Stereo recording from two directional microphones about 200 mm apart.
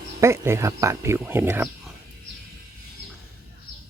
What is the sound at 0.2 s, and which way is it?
Speech, 15° right (ahead or behind).